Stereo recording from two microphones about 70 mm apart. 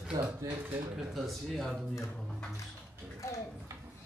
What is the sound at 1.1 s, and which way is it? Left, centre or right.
Speech, centre.